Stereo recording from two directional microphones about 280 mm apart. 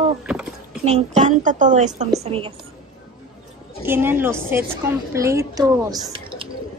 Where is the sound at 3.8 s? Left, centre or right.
Centre.